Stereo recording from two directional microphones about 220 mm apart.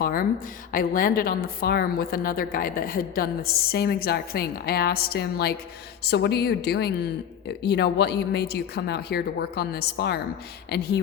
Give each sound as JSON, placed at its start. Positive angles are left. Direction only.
{"t": 0.0, "sound": "a woman's voice", "side_deg": 40}